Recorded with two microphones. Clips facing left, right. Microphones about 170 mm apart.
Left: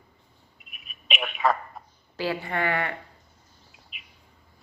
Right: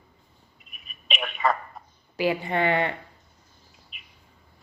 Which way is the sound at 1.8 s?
Centre (ahead or behind).